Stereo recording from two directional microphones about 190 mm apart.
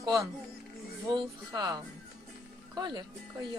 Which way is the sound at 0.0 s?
20° right (ahead or behind).